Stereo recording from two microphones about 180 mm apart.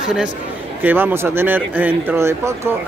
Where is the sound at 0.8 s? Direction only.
10° right (ahead or behind).